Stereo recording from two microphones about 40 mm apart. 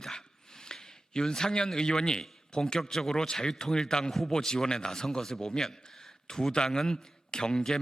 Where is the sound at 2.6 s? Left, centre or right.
Centre.